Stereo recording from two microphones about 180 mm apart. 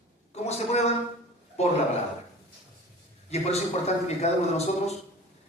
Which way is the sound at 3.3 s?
35° left (ahead or behind).